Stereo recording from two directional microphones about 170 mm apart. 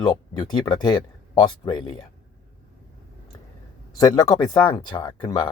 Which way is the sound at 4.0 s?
20° left (ahead or behind).